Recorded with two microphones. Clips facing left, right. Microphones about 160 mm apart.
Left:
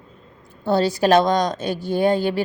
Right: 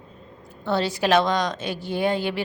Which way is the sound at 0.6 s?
40° left (ahead or behind).